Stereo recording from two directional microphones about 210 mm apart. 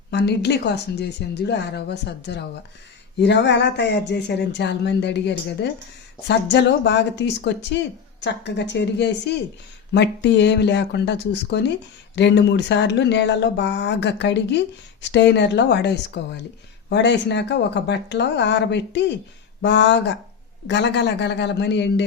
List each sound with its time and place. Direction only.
0.1 s speech: 55° left (ahead or behind)